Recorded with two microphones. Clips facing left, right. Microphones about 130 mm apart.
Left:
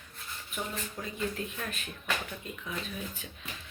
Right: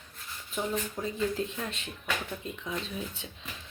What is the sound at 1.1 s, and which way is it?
Speech, 30° right (ahead or behind).